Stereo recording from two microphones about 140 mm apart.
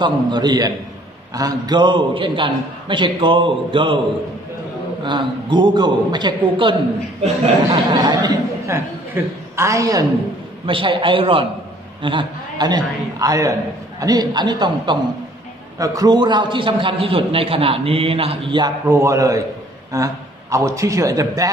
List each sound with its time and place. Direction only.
0.0 s a man's voice: 30° right (ahead or behind)
5.0 s a man's voice: 35° right (ahead or behind)
7.9 s a man's voice: 25° right (ahead or behind)
10.7 s a man's voice: 35° right (ahead or behind)
18.9 s a man's voice: 20° right (ahead or behind)